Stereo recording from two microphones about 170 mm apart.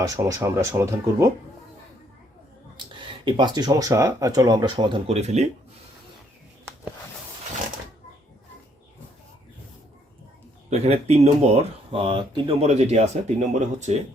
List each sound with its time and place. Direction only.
0.0 s speech: 20° right (ahead or behind)
2.7 s speech: 30° right (ahead or behind)
10.7 s speech: 40° right (ahead or behind)